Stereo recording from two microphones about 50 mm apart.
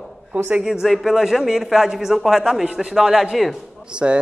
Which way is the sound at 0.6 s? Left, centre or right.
Centre.